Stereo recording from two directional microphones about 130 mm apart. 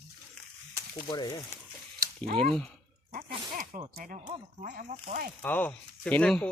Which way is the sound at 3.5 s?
80° right.